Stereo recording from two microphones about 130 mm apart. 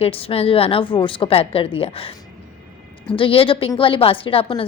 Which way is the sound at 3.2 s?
45° left (ahead or behind).